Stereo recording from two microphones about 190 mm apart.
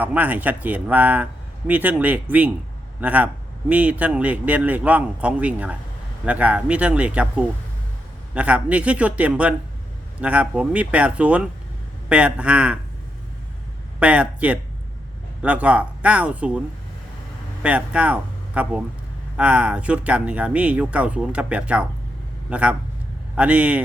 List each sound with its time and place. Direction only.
0.0 s speech: 10° right (ahead or behind)
14.0 s speech: 5° right (ahead or behind)
17.6 s a man's voice: 5° right (ahead or behind)